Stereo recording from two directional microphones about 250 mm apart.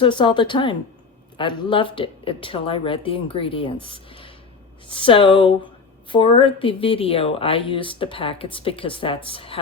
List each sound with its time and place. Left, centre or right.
0.0 s a woman's voice: centre